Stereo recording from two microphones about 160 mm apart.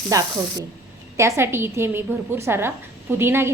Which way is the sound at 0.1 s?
20° right (ahead or behind).